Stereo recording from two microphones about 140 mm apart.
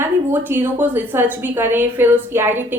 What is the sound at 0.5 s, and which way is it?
A woman's voice, 15° right (ahead or behind).